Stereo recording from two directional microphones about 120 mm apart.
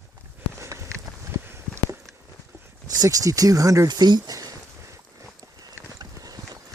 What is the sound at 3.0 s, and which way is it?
Speech, 30° right (ahead or behind).